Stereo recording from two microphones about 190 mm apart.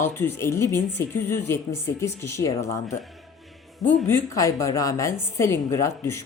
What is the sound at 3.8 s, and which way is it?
A woman's voice, 10° left (ahead or behind).